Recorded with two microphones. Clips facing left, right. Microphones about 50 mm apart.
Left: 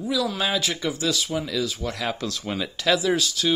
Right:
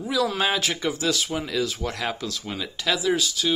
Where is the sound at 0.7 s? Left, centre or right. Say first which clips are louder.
Even; centre.